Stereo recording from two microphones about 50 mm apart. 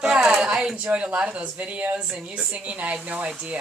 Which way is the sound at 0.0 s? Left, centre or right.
Centre.